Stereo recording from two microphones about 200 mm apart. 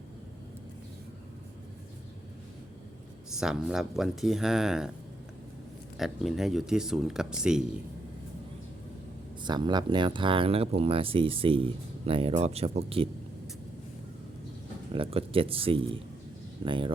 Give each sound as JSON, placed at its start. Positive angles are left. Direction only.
{"t": 3.2, "sound": "speech", "side_deg": -5}
{"t": 6.0, "sound": "speech", "side_deg": 0}
{"t": 9.4, "sound": "speech", "side_deg": -20}
{"t": 14.9, "sound": "speech", "side_deg": -30}